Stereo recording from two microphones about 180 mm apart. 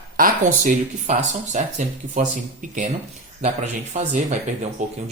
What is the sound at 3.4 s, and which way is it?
Speech, 40° right (ahead or behind).